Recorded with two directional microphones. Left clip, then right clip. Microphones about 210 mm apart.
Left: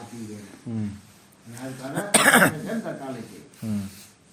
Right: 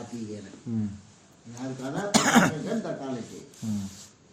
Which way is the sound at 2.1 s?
30° left (ahead or behind).